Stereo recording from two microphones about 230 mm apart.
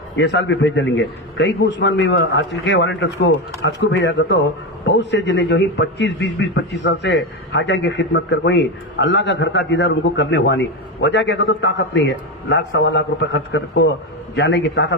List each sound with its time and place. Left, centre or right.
0.2 s a man's voice: left